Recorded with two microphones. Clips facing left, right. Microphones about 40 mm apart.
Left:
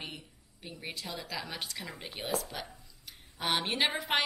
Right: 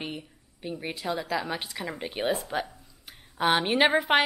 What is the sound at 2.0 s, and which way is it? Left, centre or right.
Speech, right.